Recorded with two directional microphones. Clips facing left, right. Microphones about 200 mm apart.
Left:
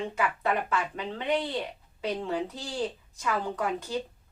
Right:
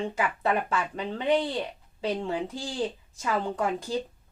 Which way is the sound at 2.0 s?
30° right (ahead or behind).